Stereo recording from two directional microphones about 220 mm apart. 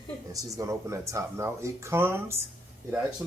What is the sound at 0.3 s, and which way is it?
Speech, 15° right (ahead or behind).